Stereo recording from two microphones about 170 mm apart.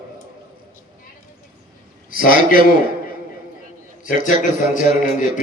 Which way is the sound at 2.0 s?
55° left (ahead or behind).